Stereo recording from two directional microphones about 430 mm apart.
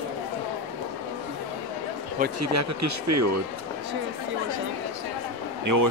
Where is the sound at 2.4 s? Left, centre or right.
Right.